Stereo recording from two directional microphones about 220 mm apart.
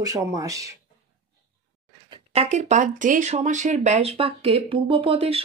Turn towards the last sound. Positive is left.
turn(degrees=-25)  # may be behind; listen again after turning